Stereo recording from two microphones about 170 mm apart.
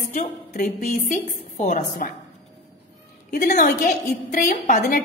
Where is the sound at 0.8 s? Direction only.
45° left (ahead or behind).